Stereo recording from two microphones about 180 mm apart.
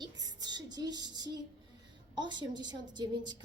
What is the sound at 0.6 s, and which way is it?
A woman's voice, 20° right (ahead or behind).